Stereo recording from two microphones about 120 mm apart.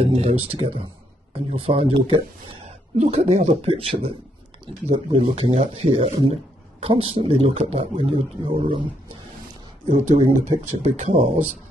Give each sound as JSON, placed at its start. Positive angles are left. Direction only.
{"t": 0.0, "sound": "speech", "side_deg": -55}
{"t": 0.6, "sound": "a man's voice", "side_deg": -45}
{"t": 3.0, "sound": "a man's voice", "side_deg": -60}
{"t": 9.9, "sound": "speech", "side_deg": -75}